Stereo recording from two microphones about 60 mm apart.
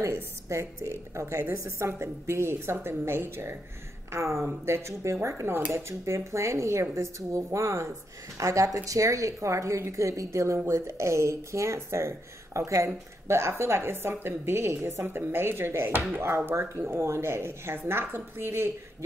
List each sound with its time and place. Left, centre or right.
0.5 s a woman's voice: right
8.4 s a woman's voice: right